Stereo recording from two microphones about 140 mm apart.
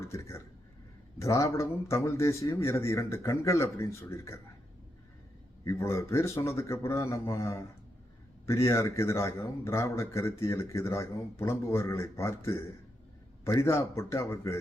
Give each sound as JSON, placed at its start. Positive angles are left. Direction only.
{"t": 0.0, "sound": "speech", "side_deg": 20}
{"t": 5.6, "sound": "speech", "side_deg": 20}